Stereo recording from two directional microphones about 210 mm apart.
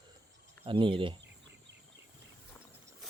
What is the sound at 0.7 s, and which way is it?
Speech, 25° right (ahead or behind).